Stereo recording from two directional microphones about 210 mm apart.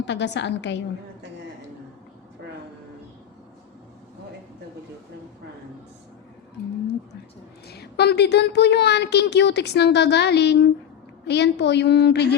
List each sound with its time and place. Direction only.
0.0 s a woman's voice: 55° left (ahead or behind)
7.7 s speech: 50° left (ahead or behind)